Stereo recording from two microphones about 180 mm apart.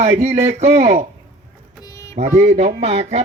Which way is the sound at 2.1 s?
40° right (ahead or behind).